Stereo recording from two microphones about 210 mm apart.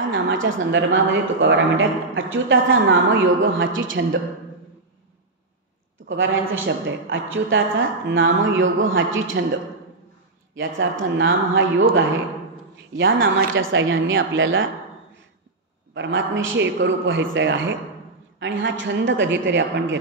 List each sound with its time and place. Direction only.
0.1 s a woman's voice: 65° right (ahead or behind)
6.0 s a woman's voice: 65° right (ahead or behind)
10.5 s a woman's voice: 65° right (ahead or behind)
12.9 s a woman's voice: 65° right (ahead or behind)
15.9 s a woman's voice: 60° right (ahead or behind)